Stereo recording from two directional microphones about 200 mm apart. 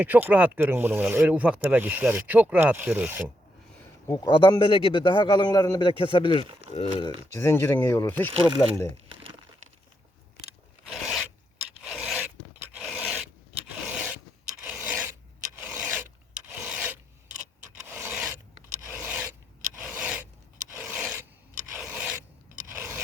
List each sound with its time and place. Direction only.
0.0 s speech: 10° right (ahead or behind)
4.1 s a man's voice: 20° left (ahead or behind)
7.3 s speech: 15° left (ahead or behind)
10.8 s filing: 5° right (ahead or behind)
13.8 s scrape: 10° right (ahead or behind)
14.6 s filing: 10° right (ahead or behind)
19.8 s rub: 5° right (ahead or behind)
20.7 s filing: 5° right (ahead or behind)
22.7 s rub: 10° right (ahead or behind)